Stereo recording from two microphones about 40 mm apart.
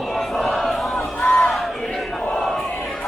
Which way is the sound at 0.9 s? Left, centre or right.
Left.